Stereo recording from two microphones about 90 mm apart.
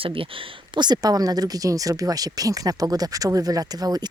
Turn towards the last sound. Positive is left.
turn(degrees=-45)  # may be behind; listen again after turning